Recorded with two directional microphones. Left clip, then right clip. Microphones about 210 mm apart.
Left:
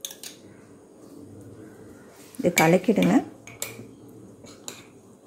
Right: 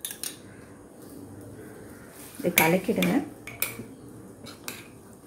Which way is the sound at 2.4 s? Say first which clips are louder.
Left 3 dB; 50° left (ahead or behind).